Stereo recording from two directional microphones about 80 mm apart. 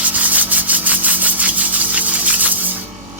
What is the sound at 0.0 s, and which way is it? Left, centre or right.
Rub, centre.